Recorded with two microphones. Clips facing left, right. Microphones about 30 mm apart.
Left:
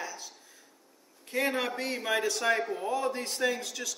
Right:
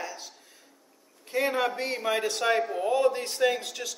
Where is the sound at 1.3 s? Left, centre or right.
Centre.